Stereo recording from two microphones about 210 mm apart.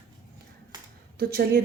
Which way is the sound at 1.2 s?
45° right (ahead or behind).